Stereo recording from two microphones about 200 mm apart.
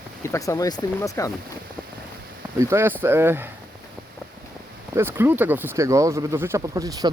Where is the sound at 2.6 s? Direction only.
15° right (ahead or behind).